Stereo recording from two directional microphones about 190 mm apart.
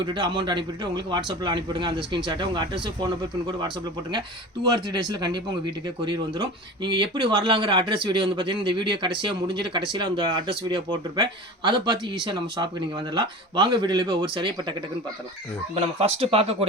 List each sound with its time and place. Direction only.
0.0 s speech: 25° right (ahead or behind)